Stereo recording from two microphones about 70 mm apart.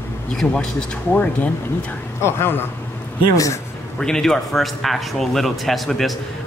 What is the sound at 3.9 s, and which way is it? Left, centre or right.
A man's voice, centre.